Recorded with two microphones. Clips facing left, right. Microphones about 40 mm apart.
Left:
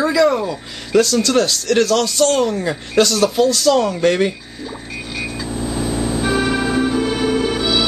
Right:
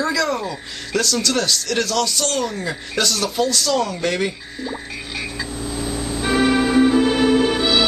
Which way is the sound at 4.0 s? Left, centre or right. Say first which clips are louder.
Left 6 dB; centre.